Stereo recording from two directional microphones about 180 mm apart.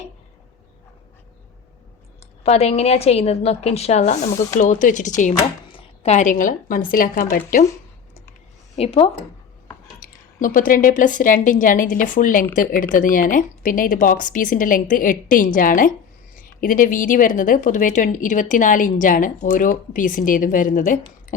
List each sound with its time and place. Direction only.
2.4 s a woman's voice: 35° left (ahead or behind)
5.4 s a woman's voice: 30° left (ahead or behind); by 7.6 s 50° left (ahead or behind)
8.7 s speech: 35° left (ahead or behind)
10.4 s a woman's voice: 50° left (ahead or behind)